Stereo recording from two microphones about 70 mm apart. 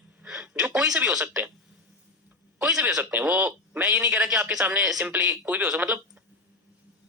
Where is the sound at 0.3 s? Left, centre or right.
Centre.